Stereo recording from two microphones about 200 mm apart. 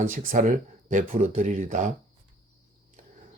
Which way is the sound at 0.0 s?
40° right (ahead or behind).